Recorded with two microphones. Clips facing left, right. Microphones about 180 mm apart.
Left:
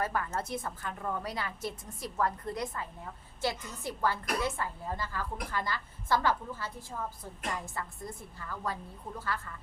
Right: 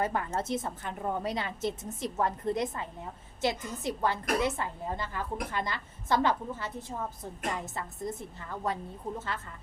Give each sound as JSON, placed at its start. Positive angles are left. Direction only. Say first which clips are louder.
{"t": 0.0, "sound": "a woman's voice", "louder": "right 2 dB", "side_deg": -20}